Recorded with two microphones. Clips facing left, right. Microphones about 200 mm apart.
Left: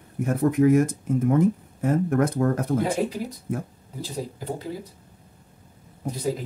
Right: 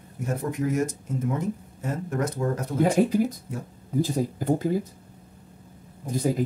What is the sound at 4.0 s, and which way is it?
Speech, 50° right (ahead or behind).